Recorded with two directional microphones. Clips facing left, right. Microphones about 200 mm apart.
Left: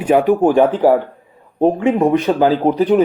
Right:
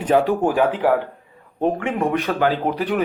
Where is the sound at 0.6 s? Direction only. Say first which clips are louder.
Left 5 dB; 35° left (ahead or behind).